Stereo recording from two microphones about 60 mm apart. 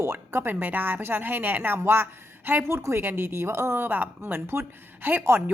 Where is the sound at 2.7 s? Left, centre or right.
Right.